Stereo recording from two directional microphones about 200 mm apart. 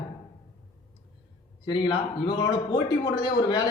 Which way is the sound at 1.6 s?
20° left (ahead or behind).